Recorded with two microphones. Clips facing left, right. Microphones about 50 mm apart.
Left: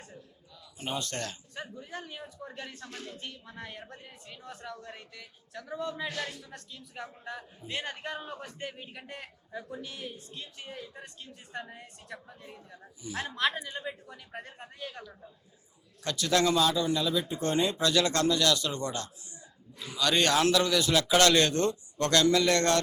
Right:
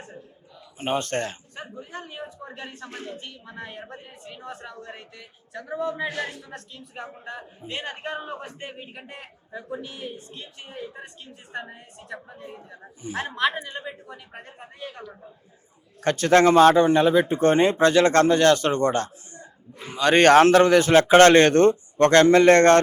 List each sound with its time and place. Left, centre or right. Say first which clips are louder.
0.0 s a sound: right 7 dB; right
0.8 s a man's voice: right 9 dB; right
14.1 s a man's voice: right 2 dB; right
16.0 s speech: right 10 dB; right